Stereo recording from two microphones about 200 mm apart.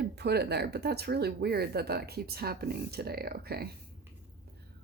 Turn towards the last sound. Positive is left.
turn(degrees=-50)  # may be behind; listen again after turning